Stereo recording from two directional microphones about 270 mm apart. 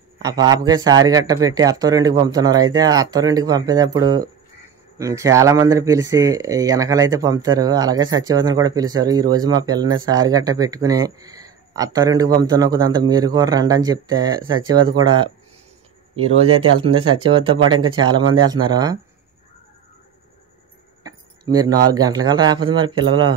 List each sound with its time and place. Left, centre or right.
0.2 s speech: centre
16.3 s speech: right
17.1 s speech: centre
21.0 s a sound: centre
21.8 s speech: centre